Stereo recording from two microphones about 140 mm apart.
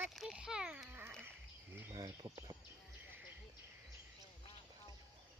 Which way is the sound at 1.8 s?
25° right (ahead or behind).